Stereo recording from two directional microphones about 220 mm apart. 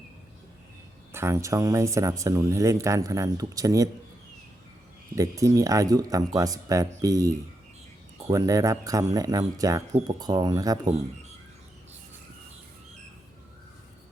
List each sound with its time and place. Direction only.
1.1 s speech: 10° right (ahead or behind)
5.1 s speech: 15° right (ahead or behind)